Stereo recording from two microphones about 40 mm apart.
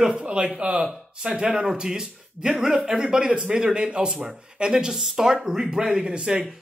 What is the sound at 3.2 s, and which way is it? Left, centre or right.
Speech, right.